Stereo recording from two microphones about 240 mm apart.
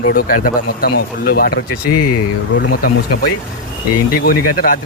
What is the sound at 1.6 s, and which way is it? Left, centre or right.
Speech, left.